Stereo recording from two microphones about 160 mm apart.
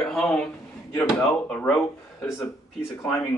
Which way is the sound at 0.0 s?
5° left (ahead or behind).